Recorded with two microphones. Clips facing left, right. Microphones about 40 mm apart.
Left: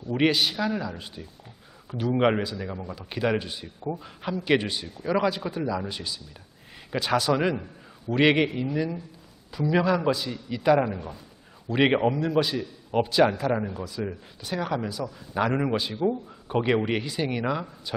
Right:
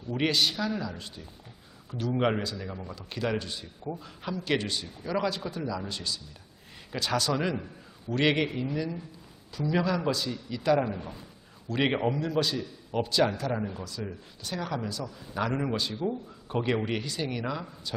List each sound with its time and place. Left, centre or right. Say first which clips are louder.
0.1 s a man's voice: left 4 dB; centre
7.5 s a sound: left 2 dB; centre
8.1 s speech: left 5 dB; centre